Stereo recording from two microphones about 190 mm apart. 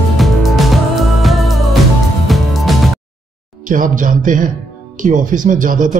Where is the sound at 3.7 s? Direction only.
45° right (ahead or behind).